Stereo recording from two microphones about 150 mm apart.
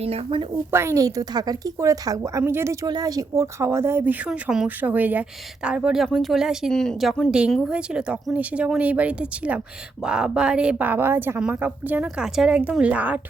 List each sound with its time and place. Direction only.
0.0 s a woman's voice: 40° right (ahead or behind)
0.7 s a woman's voice: 15° right (ahead or behind)
2.8 s speech: 25° right (ahead or behind); by 13.1 s 10° right (ahead or behind)